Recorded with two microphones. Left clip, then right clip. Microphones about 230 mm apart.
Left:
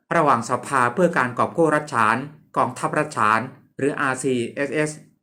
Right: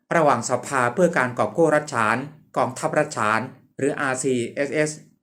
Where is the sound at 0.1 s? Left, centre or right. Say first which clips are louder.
Even; centre.